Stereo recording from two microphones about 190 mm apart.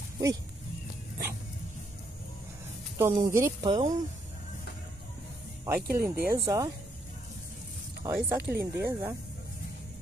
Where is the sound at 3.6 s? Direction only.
35° right (ahead or behind).